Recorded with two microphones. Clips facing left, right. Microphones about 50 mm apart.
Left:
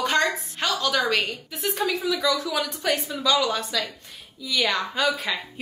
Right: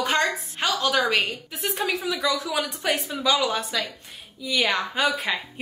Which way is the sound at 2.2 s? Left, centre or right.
Centre.